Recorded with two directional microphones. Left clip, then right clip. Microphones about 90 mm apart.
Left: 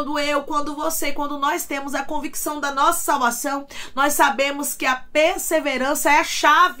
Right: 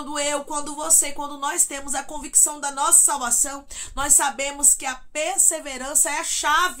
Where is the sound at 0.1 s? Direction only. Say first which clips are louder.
Left 2 dB; 25° right (ahead or behind).